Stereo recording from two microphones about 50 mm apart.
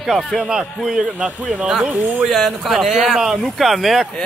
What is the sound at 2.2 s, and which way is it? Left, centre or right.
Speech, centre.